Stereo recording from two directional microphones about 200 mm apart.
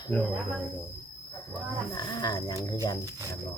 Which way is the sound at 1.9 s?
20° left (ahead or behind).